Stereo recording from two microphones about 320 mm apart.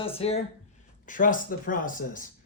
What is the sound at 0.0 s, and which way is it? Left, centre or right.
Speech, centre.